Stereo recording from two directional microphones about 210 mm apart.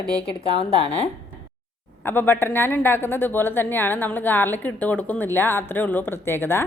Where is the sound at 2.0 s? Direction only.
10° left (ahead or behind).